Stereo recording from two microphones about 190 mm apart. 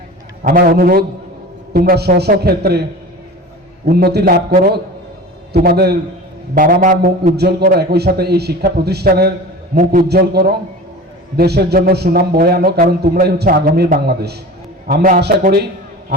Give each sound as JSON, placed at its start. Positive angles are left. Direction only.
{"t": 0.4, "sound": "a man's voice", "side_deg": -50}
{"t": 3.8, "sound": "speech", "side_deg": -55}
{"t": 9.7, "sound": "a man's voice", "side_deg": -40}
{"t": 10.1, "sound": "speech", "side_deg": -55}